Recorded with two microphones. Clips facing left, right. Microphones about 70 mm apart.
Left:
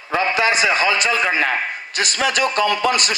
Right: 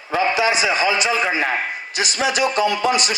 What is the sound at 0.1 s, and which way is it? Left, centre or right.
A man's voice, left.